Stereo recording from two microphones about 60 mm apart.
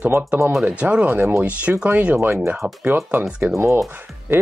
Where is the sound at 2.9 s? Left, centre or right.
Right.